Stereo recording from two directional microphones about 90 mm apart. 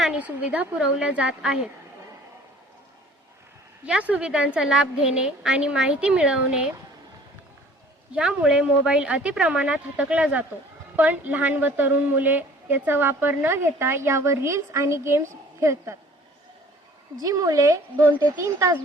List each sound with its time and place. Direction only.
0.0 s a woman's voice: 15° right (ahead or behind)
3.8 s a woman's voice: 15° right (ahead or behind)
8.1 s a woman's voice: 15° right (ahead or behind); by 16.0 s 30° right (ahead or behind)
17.2 s a woman's voice: 40° right (ahead or behind)